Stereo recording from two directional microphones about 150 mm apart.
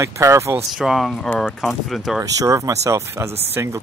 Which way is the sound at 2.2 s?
20° right (ahead or behind).